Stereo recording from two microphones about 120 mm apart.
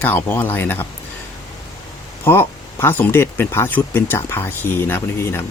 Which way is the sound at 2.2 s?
20° left (ahead or behind).